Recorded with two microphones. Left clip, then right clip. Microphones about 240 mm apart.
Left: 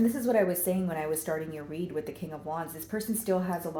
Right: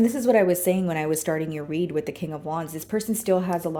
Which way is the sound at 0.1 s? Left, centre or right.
Right.